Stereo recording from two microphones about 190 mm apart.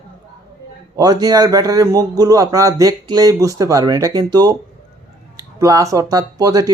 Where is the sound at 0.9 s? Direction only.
20° right (ahead or behind).